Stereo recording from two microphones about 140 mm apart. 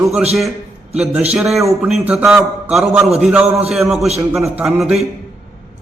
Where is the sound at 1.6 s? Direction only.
20° right (ahead or behind).